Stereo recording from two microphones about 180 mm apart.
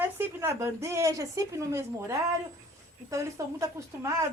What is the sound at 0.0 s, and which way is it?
Speech, 15° right (ahead or behind).